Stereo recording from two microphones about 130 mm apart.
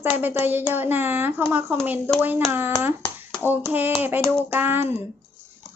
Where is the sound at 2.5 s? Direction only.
15° right (ahead or behind).